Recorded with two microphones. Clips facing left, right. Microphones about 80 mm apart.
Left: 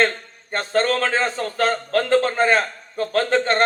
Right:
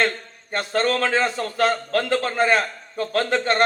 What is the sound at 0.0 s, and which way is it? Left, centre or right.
A man's voice, left.